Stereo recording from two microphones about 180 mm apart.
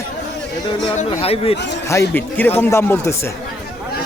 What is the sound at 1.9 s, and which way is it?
Speech, 15° left (ahead or behind).